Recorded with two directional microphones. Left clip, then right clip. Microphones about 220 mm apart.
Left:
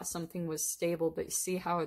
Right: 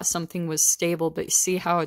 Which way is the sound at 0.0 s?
40° right (ahead or behind).